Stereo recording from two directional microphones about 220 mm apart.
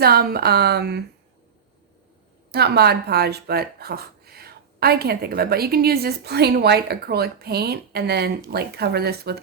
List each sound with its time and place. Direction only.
0.0 s speech: 45° right (ahead or behind)
2.5 s speech: 45° right (ahead or behind)